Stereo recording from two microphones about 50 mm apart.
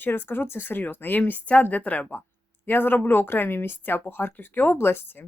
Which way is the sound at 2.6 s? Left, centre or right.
Left.